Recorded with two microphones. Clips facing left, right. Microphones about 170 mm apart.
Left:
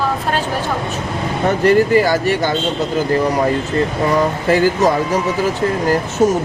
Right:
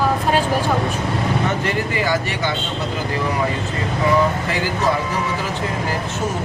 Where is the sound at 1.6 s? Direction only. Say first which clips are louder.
Left 9 dB; 40° left (ahead or behind).